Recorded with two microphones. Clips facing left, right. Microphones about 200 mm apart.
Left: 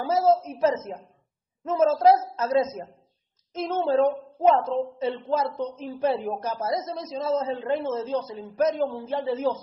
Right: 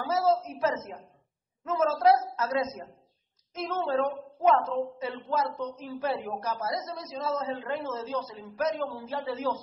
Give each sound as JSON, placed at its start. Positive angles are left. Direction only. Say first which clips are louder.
{"t": 0.0, "sound": "a man's voice", "louder": "left 4 dB", "side_deg": 25}